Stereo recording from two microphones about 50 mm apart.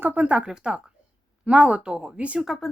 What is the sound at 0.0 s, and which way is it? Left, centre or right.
Speech, right.